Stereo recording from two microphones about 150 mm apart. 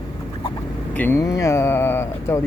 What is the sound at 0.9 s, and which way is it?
Speech, 15° left (ahead or behind).